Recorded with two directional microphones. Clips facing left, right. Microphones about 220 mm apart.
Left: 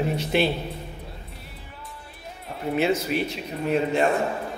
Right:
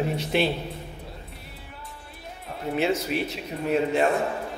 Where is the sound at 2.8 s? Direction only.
Centre (ahead or behind).